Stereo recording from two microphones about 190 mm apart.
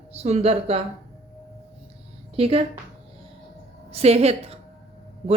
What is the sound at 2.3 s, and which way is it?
Speech, 30° right (ahead or behind).